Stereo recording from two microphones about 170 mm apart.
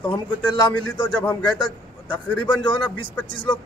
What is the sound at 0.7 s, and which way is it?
A man's voice, 25° left (ahead or behind).